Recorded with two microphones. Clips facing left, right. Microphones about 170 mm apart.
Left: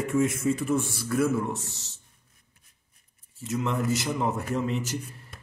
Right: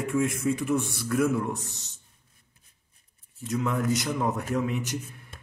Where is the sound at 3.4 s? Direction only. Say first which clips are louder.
Right 1 dB; centre (ahead or behind).